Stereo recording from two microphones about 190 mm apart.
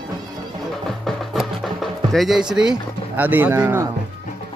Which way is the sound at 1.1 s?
Centre (ahead or behind).